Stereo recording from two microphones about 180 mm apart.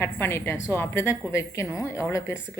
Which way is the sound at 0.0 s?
15° left (ahead or behind).